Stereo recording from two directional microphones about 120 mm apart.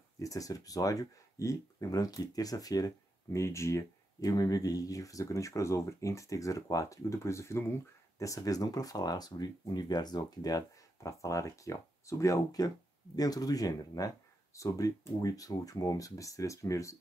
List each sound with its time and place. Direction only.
0.2 s speech: 30° left (ahead or behind)